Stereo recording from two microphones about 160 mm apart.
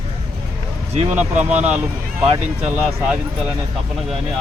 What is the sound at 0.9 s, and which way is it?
Speech, 45° right (ahead or behind).